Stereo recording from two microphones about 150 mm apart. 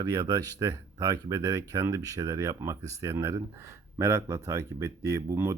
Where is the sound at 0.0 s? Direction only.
25° right (ahead or behind).